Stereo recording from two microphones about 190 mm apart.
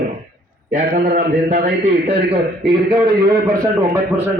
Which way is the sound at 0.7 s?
40° right (ahead or behind).